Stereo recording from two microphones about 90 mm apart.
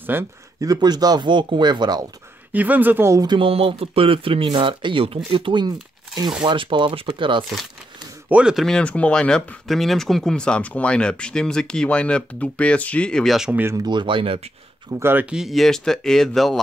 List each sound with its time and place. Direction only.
0.0 s speech: 25° right (ahead or behind)
0.6 s speech: 45° right (ahead or behind)
2.5 s speech: 20° right (ahead or behind)
3.3 s speech: 80° right
4.5 s speech: 65° right (ahead or behind)
6.4 s speech: 65° right (ahead or behind)
8.3 s speech: 15° right (ahead or behind)
8.5 s speech: 5° left (ahead or behind)
13.5 s speech: 20° right (ahead or behind)
13.8 s speech: 65° right (ahead or behind); by 14.4 s 80° right
14.9 s speech: 30° right (ahead or behind)
15.2 s speech: 5° right (ahead or behind)